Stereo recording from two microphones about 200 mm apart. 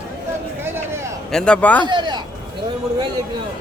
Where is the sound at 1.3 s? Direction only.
5° left (ahead or behind).